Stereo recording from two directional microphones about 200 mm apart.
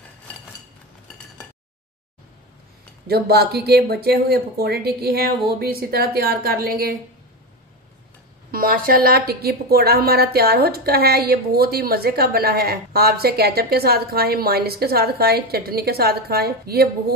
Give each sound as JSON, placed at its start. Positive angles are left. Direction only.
{"t": 3.1, "sound": "a woman's voice", "side_deg": -50}
{"t": 8.5, "sound": "a woman's voice", "side_deg": -45}